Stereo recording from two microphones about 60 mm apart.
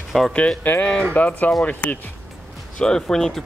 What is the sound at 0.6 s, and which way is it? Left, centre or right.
Speech, left.